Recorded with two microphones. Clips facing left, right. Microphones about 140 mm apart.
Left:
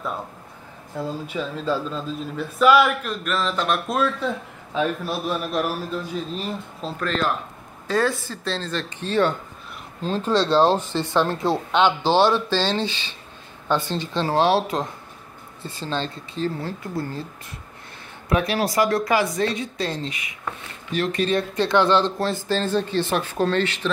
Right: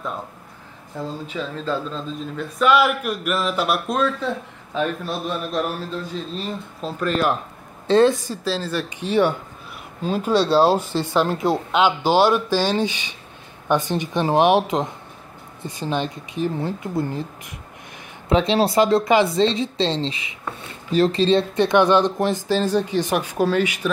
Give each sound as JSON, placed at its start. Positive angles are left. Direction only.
{"t": 1.0, "sound": "speech", "side_deg": 10}
{"t": 3.0, "sound": "speech", "side_deg": -10}
{"t": 3.9, "sound": "speech", "side_deg": 5}
{"t": 7.0, "sound": "speech", "side_deg": -10}
{"t": 7.8, "sound": "speech", "side_deg": -25}